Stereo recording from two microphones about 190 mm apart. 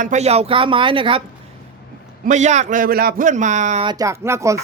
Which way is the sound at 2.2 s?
40° right (ahead or behind).